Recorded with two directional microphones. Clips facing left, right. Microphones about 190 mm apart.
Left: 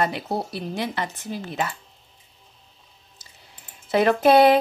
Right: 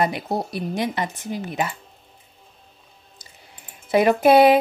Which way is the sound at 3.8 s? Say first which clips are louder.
Right 2 dB; 10° right (ahead or behind).